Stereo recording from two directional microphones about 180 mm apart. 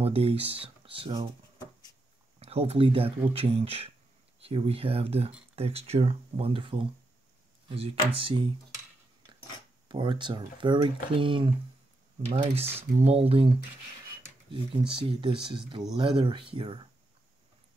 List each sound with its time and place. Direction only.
0.0 s speech: 35° right (ahead or behind)
2.4 s speech: 35° right (ahead or behind)
9.8 s speech: 25° right (ahead or behind)
12.7 s speech: 35° right (ahead or behind)